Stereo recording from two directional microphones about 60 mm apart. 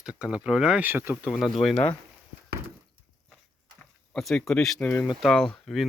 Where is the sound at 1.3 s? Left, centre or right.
Centre.